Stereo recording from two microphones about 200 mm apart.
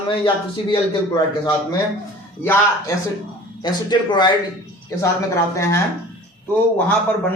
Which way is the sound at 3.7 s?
20° left (ahead or behind).